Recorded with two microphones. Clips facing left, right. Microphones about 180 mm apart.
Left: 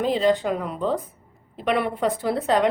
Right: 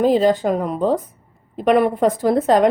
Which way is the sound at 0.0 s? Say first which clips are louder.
Right 5 dB; 45° right (ahead or behind).